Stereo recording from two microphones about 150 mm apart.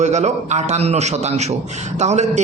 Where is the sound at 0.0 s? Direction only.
50° right (ahead or behind).